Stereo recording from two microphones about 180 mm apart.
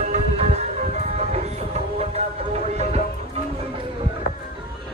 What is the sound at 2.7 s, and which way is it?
Music, 35° right (ahead or behind).